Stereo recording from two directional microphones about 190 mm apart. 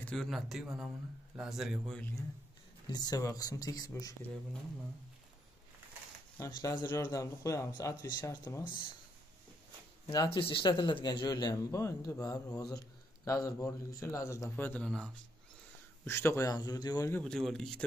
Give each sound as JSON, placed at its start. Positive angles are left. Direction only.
{"t": 0.0, "sound": "a man's voice", "side_deg": 0}
{"t": 2.9, "sound": "speech", "side_deg": 20}
{"t": 6.5, "sound": "a man's voice", "side_deg": 15}
{"t": 10.0, "sound": "a man's voice", "side_deg": 20}
{"t": 16.1, "sound": "a man's voice", "side_deg": 15}
{"t": 17.2, "sound": "a man's voice", "side_deg": 5}